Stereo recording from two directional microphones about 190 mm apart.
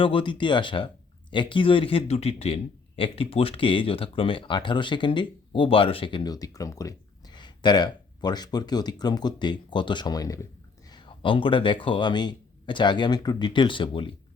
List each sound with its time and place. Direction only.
0.0 s a man's voice: 25° left (ahead or behind)